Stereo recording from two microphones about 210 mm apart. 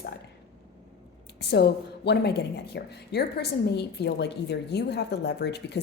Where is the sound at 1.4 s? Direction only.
50° left (ahead or behind).